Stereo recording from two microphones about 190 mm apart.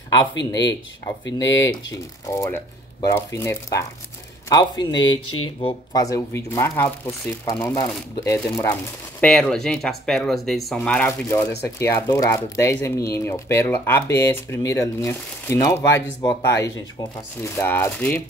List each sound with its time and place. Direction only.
0.5 s speech: 25° left (ahead or behind)
1.2 s speech: 75° left (ahead or behind)
2.2 s speech: 15° left (ahead or behind)